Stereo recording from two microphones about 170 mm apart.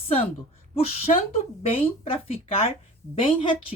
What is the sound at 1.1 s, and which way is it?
Speech, 40° left (ahead or behind).